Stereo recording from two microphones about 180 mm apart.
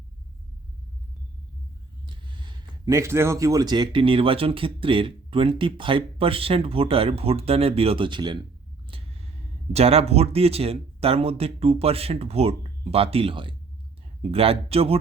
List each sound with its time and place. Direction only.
2.0 s speech: 25° right (ahead or behind)
8.9 s a sound: 35° right (ahead or behind)
9.7 s speech: 35° right (ahead or behind)